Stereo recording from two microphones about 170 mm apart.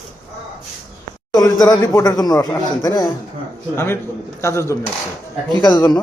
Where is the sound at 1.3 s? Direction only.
25° left (ahead or behind).